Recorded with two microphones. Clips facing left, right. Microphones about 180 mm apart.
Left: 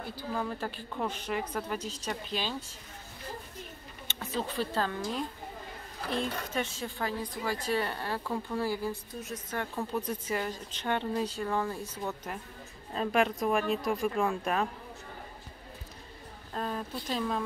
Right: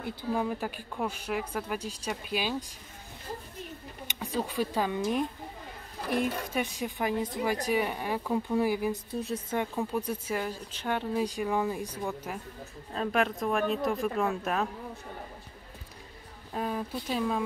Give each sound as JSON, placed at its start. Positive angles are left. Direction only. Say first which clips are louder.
{"t": 0.0, "sound": "speech", "louder": "right 4 dB", "side_deg": -15}
{"t": 4.1, "sound": "speech", "louder": "right 2 dB", "side_deg": -10}
{"t": 9.1, "sound": "speech", "louder": "right 6 dB", "side_deg": -30}
{"t": 9.6, "sound": "speech", "louder": "right 1 dB", "side_deg": -10}
{"t": 16.5, "sound": "speech", "louder": "right 3 dB", "side_deg": -10}